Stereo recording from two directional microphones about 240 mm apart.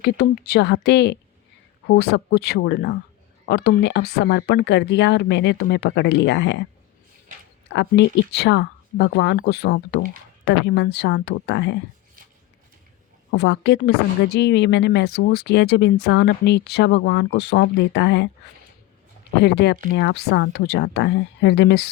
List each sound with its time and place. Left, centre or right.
0.0 s speech: left
7.7 s speech: left
13.3 s speech: left
19.4 s speech: left